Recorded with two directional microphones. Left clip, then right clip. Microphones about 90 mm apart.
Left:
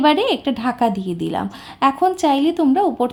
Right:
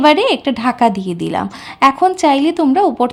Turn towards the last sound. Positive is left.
turn(degrees=-25)  # may be behind; listen again after turning